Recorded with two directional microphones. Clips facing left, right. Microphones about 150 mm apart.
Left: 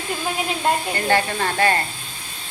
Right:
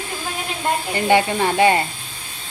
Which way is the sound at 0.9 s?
15° right (ahead or behind).